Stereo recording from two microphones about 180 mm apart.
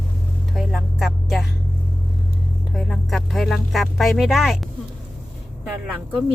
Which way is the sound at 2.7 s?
Centre (ahead or behind).